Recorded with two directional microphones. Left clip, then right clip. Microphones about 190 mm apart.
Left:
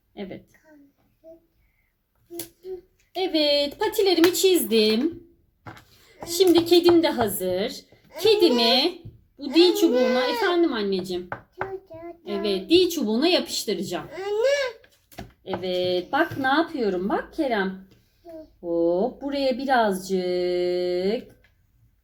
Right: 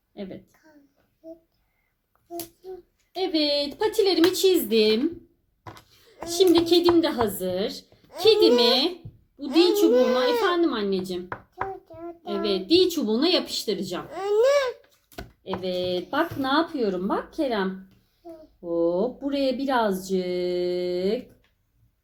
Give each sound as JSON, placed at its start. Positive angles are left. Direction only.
{"t": 0.1, "sound": "a woman's voice", "side_deg": -5}
{"t": 3.1, "sound": "speech", "side_deg": 0}
{"t": 6.2, "sound": "speech", "side_deg": 0}
{"t": 9.9, "sound": "a child's voice", "side_deg": -45}
{"t": 10.2, "sound": "speech", "side_deg": -5}
{"t": 12.2, "sound": "speech", "side_deg": 0}
{"t": 14.1, "sound": "babbling", "side_deg": -45}
{"t": 15.4, "sound": "speech", "side_deg": -5}
{"t": 18.6, "sound": "speech", "side_deg": 0}